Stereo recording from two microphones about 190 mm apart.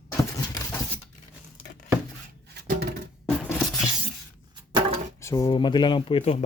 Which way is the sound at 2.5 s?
55° right (ahead or behind).